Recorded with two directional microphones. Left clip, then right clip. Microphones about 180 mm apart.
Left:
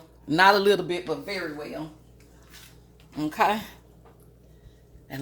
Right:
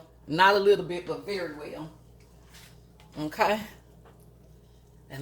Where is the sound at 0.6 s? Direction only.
55° left (ahead or behind).